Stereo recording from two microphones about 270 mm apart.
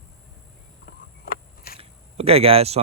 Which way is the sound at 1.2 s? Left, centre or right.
Left.